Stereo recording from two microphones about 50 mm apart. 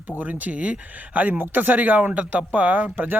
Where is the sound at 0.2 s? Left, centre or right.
Right.